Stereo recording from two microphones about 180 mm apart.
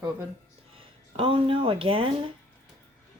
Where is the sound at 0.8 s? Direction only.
30° right (ahead or behind).